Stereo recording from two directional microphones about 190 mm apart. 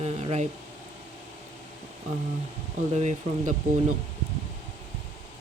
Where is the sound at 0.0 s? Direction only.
35° right (ahead or behind).